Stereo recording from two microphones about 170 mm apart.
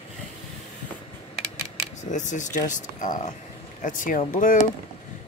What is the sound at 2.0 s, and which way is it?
Speech, 45° left (ahead or behind).